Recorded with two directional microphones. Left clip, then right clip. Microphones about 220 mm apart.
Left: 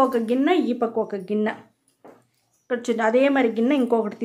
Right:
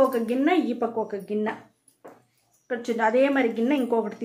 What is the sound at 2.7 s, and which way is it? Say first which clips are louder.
A woman's voice: left 3 dB; 30° left (ahead or behind).